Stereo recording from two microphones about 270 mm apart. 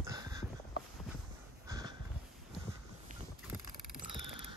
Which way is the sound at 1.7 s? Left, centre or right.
Centre.